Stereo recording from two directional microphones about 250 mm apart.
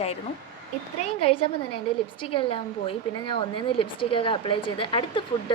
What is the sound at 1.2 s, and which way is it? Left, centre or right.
A woman's voice, left.